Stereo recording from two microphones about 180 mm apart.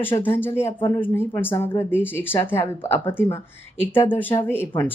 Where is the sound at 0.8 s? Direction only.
30° left (ahead or behind).